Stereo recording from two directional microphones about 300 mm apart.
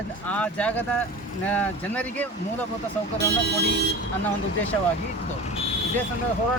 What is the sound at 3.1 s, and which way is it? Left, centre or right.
Speech, right.